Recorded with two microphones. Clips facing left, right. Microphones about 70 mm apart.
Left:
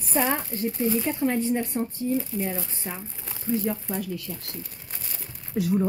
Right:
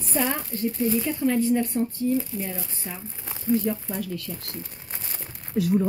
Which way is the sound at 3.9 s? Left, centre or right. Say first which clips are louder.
Even; centre.